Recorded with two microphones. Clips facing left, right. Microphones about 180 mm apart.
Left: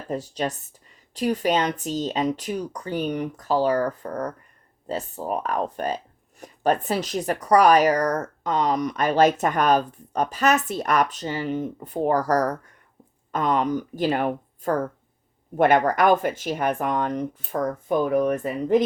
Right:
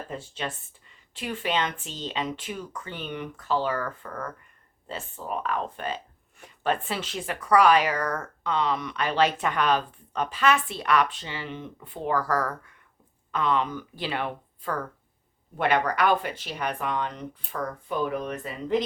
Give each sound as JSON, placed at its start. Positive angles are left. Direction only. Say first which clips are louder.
{"t": 0.1, "sound": "speech", "louder": "left 12 dB", "side_deg": 40}